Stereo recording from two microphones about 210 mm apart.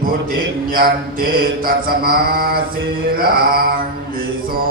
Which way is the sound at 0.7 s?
45° right (ahead or behind).